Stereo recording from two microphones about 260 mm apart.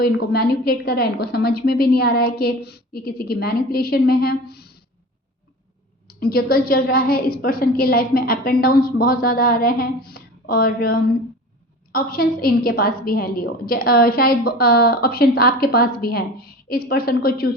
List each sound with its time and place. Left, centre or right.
0.0 s a woman's voice: left
6.1 s a woman's voice: left